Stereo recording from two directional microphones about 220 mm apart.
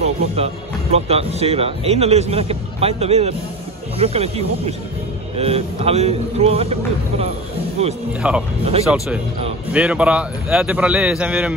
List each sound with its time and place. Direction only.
0.9 s a man's voice: 30° right (ahead or behind)
8.2 s a man's voice: 5° right (ahead or behind)